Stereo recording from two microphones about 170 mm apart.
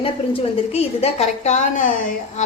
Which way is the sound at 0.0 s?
35° left (ahead or behind).